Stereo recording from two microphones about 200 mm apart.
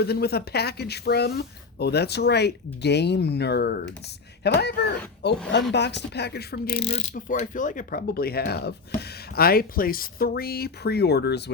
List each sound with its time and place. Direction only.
0.0 s speech: 50° left (ahead or behind)
6.7 s speech: 30° left (ahead or behind)
7.1 s speech: 40° left (ahead or behind); by 11.5 s 55° left (ahead or behind)